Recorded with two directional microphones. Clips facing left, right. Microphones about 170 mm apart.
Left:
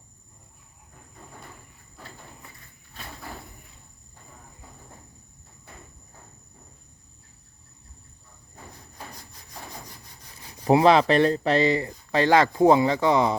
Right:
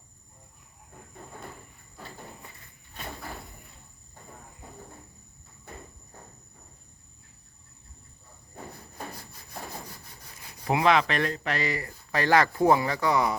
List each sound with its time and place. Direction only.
9.3 s wood: 10° right (ahead or behind)
10.7 s speech: 30° left (ahead or behind)